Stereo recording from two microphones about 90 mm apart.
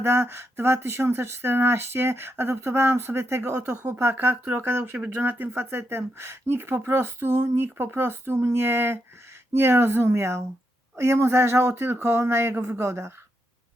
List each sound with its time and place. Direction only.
0.0 s speech: 25° right (ahead or behind)